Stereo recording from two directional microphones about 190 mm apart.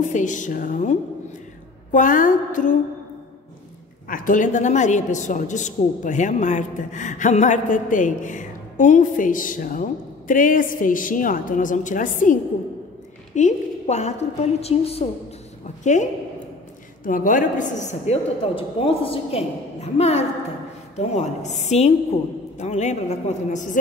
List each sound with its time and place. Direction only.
0.0 s a woman's voice: 40° left (ahead or behind)
4.1 s a woman's voice: 45° left (ahead or behind)